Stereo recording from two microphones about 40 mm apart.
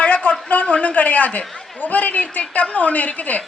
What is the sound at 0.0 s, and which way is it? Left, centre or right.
A man's voice, left.